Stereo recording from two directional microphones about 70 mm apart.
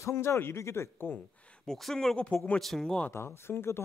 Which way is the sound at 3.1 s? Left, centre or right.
Left.